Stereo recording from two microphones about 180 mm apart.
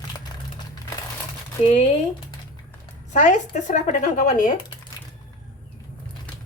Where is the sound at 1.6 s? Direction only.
35° left (ahead or behind).